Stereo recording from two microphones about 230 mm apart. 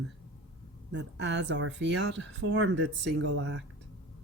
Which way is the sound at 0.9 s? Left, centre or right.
Right.